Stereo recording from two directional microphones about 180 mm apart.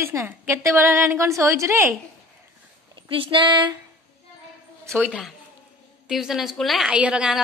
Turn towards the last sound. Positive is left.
turn(degrees=-5)  # may be behind; listen again after turning